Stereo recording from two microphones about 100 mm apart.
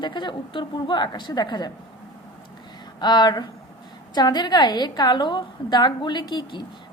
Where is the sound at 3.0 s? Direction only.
45° left (ahead or behind).